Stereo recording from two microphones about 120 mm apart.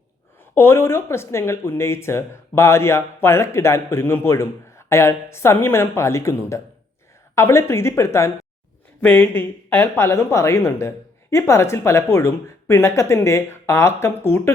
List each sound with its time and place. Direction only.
0.5 s speech: 20° left (ahead or behind)